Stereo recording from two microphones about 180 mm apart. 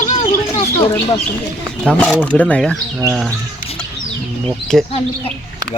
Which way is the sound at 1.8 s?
5° left (ahead or behind).